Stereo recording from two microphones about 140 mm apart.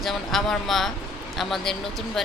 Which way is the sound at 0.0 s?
Centre (ahead or behind).